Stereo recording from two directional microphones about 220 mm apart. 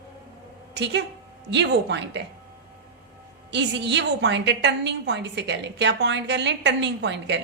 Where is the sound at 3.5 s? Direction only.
50° right (ahead or behind).